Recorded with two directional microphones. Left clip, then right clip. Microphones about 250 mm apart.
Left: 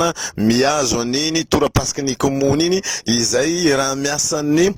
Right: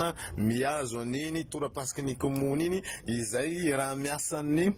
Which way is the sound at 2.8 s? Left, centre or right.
Left.